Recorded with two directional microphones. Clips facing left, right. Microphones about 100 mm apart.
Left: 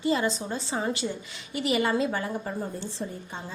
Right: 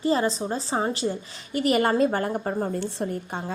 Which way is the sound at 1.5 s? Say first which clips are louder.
Right 4 dB; 45° right (ahead or behind).